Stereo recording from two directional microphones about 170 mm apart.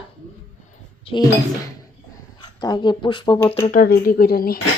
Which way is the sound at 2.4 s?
25° left (ahead or behind).